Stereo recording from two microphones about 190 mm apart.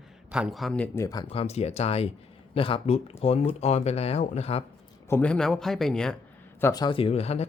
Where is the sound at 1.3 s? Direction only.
30° left (ahead or behind).